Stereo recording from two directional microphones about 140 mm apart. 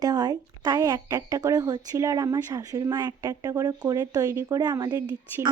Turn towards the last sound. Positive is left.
turn(degrees=-25)  # may be behind; listen again after turning